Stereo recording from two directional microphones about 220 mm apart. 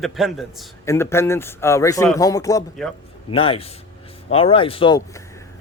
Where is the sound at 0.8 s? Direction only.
10° left (ahead or behind).